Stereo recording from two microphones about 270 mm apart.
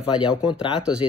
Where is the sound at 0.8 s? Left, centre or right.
Centre.